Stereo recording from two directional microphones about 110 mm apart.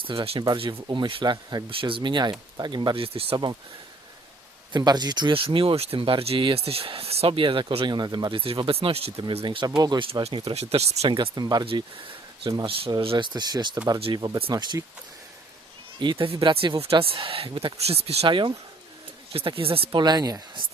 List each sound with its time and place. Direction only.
0.0 s speech: 50° right (ahead or behind)
1.7 s speech: 50° right (ahead or behind)
4.7 s speech: 40° right (ahead or behind)
8.4 s speech: 55° right (ahead or behind)
9.6 s speech: 35° right (ahead or behind)
10.0 s speech: 50° right (ahead or behind)
10.2 s speech: 70° right (ahead or behind)
11.1 s speech: 40° right (ahead or behind)
13.0 s speech: 50° right (ahead or behind)
16.0 s speech: 50° right (ahead or behind)
17.8 s speech: 65° right (ahead or behind)
18.3 s speech: 50° right (ahead or behind)
20.0 s speech: 40° right (ahead or behind)